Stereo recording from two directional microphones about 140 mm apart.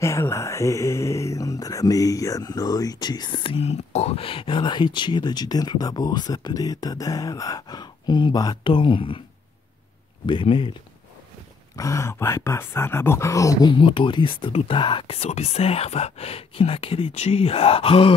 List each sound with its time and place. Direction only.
0.0 s speech: 20° left (ahead or behind); by 9.2 s 40° left (ahead or behind)
10.2 s speech: 35° left (ahead or behind)
11.7 s speech: 20° left (ahead or behind); by 18.1 s 40° left (ahead or behind)